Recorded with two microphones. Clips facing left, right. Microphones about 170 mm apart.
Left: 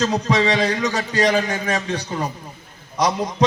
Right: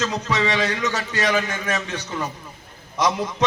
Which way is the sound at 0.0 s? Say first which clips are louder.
Left 4 dB; 35° left (ahead or behind).